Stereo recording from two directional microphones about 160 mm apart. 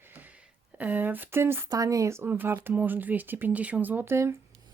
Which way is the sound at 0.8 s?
10° right (ahead or behind).